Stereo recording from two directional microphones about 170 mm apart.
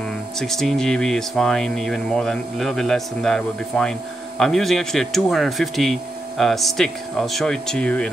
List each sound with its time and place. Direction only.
0.4 s speech: centre (ahead or behind)